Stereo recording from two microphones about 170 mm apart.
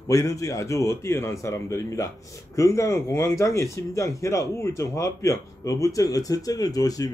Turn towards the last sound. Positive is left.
turn(degrees=20)  # may be behind; listen again after turning